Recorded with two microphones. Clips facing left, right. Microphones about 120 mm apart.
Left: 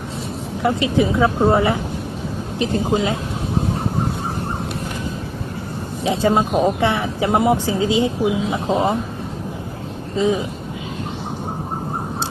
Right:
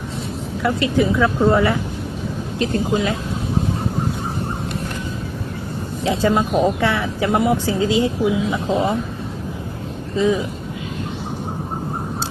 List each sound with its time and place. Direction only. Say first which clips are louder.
0.6 s speech: left 1 dB; 20° left (ahead or behind)
6.0 s speech: left 1 dB; 20° left (ahead or behind)
10.2 s speech: right 1 dB; 20° left (ahead or behind)